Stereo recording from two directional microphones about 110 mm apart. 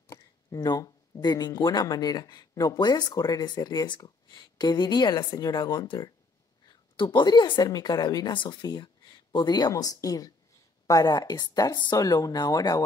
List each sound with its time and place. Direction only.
0.1 s a woman's voice: 35° left (ahead or behind)